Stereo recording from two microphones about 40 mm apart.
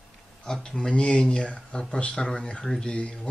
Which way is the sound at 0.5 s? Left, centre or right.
Left.